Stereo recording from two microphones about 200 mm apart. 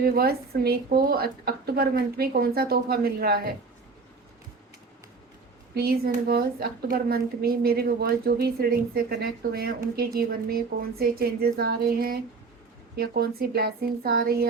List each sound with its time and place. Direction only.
0.0 s a woman's voice: 50° right (ahead or behind)
5.7 s a woman's voice: 50° right (ahead or behind)